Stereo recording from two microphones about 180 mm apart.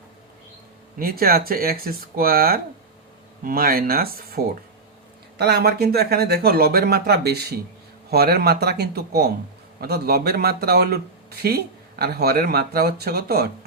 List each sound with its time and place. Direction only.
0.9 s speech: 55° right (ahead or behind)